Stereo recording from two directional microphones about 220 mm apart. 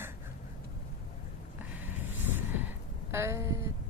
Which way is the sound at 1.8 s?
10° right (ahead or behind).